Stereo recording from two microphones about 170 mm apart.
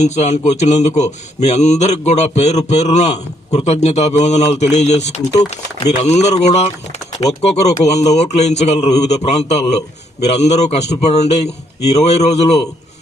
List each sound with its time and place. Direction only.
0.0 s speech: 45° left (ahead or behind)